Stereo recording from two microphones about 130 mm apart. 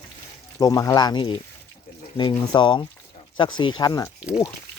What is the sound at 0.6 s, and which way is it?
Speech, 25° left (ahead or behind).